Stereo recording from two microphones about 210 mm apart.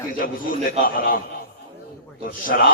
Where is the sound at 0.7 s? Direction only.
45° left (ahead or behind).